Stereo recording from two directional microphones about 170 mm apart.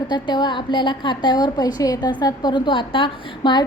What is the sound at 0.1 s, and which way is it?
A woman's voice, 25° left (ahead or behind).